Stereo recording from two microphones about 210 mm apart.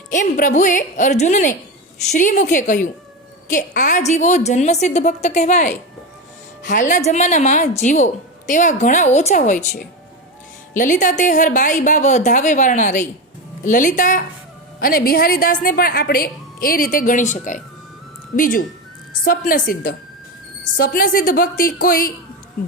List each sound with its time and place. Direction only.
0.1 s a woman's voice: 35° left (ahead or behind)